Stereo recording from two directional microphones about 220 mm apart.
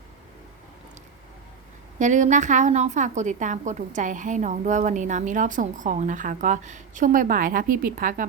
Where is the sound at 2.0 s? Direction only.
35° right (ahead or behind).